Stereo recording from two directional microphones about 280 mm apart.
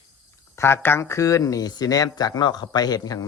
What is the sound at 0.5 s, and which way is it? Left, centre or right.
Speech, centre.